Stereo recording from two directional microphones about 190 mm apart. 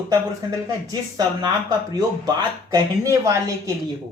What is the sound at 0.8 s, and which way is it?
Speech, 20° right (ahead or behind).